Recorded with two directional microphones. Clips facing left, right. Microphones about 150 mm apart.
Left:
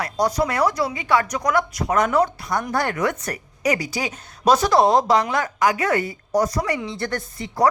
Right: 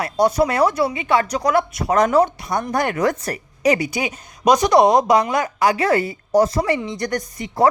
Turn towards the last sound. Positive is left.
turn(degrees=-20)  # may be behind; listen again after turning